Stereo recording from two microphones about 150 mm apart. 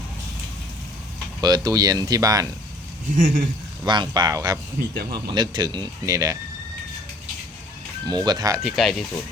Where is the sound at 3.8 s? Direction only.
30° right (ahead or behind).